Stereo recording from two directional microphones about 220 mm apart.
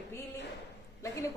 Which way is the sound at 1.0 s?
15° left (ahead or behind).